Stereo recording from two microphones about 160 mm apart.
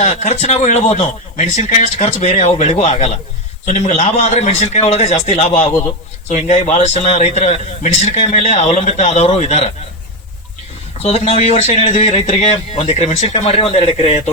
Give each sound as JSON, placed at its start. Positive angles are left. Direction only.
{"t": 0.0, "sound": "a man's voice", "side_deg": 45}
{"t": 11.0, "sound": "speech", "side_deg": 40}